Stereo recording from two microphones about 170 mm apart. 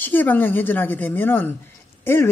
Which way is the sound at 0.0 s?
10° left (ahead or behind).